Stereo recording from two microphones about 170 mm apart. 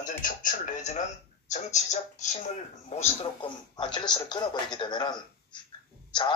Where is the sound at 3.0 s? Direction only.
35° left (ahead or behind).